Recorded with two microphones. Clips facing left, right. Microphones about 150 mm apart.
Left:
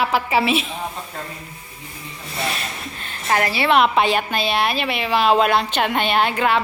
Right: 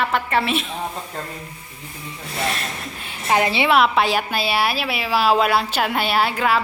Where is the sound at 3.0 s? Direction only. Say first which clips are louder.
Right 1 dB; 10° right (ahead or behind).